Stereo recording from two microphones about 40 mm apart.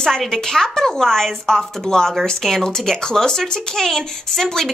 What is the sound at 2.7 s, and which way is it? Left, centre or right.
Speech, centre.